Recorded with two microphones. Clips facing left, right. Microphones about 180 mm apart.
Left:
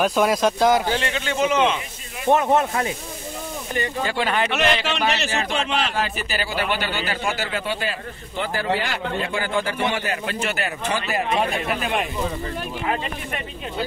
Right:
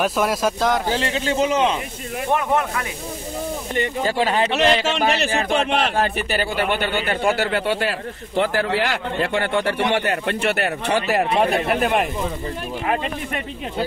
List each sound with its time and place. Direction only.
0.0 s speech: centre (ahead or behind)
0.8 s a man's voice: 35° right (ahead or behind)
2.5 s speech: 30° left (ahead or behind)
4.0 s a man's voice: 35° right (ahead or behind)
4.8 s a man's voice: 45° right (ahead or behind); by 11.4 s 65° right (ahead or behind)
11.7 s speech: 50° right (ahead or behind)